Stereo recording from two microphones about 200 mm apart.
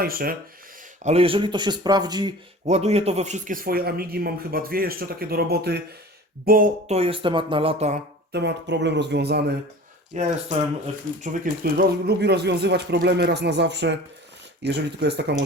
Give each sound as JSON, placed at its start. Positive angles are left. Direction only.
{"t": 0.0, "sound": "speech", "side_deg": -45}
{"t": 1.0, "sound": "speech", "side_deg": -30}
{"t": 2.6, "sound": "speech", "side_deg": -35}
{"t": 6.8, "sound": "speech", "side_deg": -30}
{"t": 8.3, "sound": "speech", "side_deg": -60}
{"t": 10.1, "sound": "speech", "side_deg": -40}